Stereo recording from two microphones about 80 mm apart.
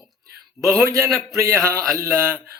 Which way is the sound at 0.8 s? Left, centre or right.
Right.